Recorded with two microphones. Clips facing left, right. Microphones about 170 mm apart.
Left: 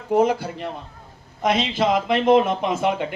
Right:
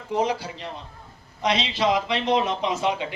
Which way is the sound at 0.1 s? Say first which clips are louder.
Left 6 dB; 50° left (ahead or behind).